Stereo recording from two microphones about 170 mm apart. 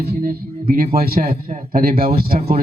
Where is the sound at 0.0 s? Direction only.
65° right (ahead or behind).